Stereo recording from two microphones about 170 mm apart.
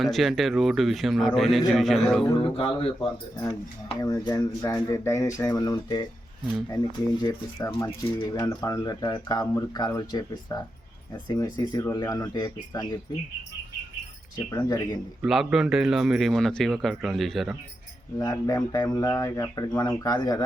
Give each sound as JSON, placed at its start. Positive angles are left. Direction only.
{"t": 0.0, "sound": "speech", "side_deg": 0}
{"t": 2.6, "sound": "speech", "side_deg": 35}
{"t": 4.0, "sound": "speech", "side_deg": 25}
{"t": 14.3, "sound": "speech", "side_deg": 20}
{"t": 15.2, "sound": "speech", "side_deg": -5}
{"t": 18.2, "sound": "speech", "side_deg": 20}